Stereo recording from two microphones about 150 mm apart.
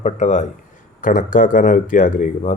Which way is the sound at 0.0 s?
50° left (ahead or behind).